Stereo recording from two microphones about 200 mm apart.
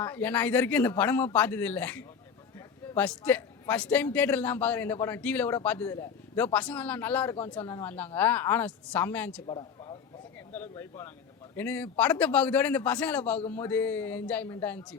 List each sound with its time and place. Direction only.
0.0 s speech: 10° left (ahead or behind)
9.5 s a sound: 25° left (ahead or behind)
10.5 s speech: 10° left (ahead or behind)